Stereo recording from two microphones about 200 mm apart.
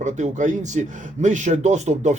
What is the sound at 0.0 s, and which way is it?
Speech, 35° right (ahead or behind).